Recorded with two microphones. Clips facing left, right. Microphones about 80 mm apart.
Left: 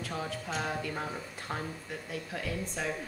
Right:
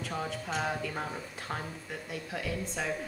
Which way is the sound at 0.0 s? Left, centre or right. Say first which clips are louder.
Right 1 dB; centre.